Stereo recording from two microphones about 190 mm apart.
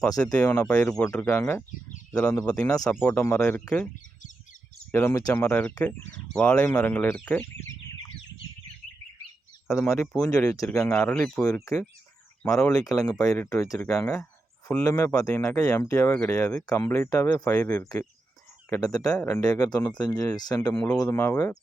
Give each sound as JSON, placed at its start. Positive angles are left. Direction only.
{"t": 0.2, "sound": "speech", "side_deg": 5}
{"t": 2.7, "sound": "speech", "side_deg": 15}
{"t": 4.9, "sound": "speech", "side_deg": 10}
{"t": 9.6, "sound": "speech", "side_deg": 0}
{"t": 11.0, "sound": "speech", "side_deg": 5}